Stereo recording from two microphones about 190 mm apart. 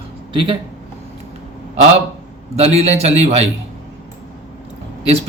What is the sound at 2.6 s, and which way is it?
Speech, 35° right (ahead or behind).